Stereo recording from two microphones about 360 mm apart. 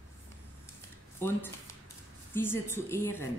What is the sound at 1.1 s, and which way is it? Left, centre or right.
A woman's voice, centre.